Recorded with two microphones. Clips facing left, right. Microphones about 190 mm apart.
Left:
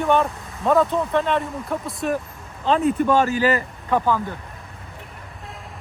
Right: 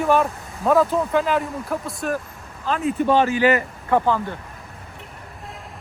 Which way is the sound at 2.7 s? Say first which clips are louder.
Left 2 dB; 35° left (ahead or behind).